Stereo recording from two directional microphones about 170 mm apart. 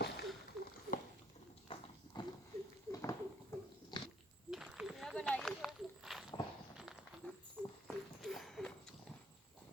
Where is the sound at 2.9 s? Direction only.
15° left (ahead or behind).